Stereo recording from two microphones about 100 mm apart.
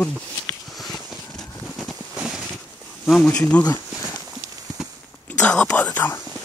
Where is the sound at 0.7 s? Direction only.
Centre (ahead or behind).